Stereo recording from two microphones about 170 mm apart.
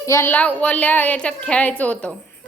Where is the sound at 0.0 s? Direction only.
15° left (ahead or behind).